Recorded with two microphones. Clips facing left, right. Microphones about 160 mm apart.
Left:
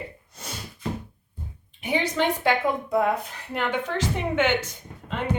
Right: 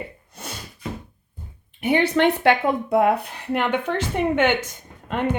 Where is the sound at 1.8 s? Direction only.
60° right (ahead or behind).